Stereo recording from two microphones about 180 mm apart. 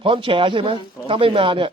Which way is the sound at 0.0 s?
30° right (ahead or behind).